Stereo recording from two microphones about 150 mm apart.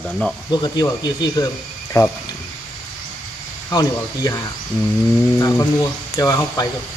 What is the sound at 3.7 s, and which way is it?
Speech, 25° left (ahead or behind).